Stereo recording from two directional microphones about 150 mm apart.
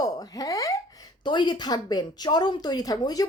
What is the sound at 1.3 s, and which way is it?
Speech, 30° left (ahead or behind).